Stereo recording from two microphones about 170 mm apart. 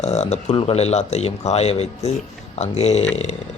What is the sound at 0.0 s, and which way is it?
Speech, 40° left (ahead or behind).